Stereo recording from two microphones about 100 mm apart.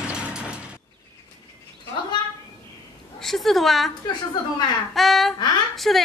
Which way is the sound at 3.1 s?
5° left (ahead or behind).